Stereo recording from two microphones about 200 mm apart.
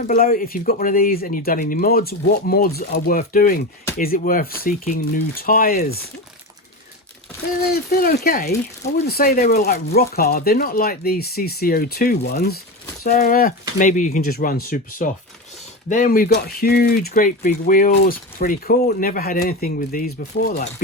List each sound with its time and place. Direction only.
0.1 s speech: 45° left (ahead or behind)
7.9 s speech: 50° left (ahead or behind)